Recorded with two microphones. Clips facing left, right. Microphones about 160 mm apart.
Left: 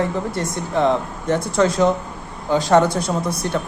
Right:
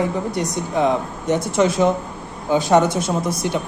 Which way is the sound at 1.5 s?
25° right (ahead or behind).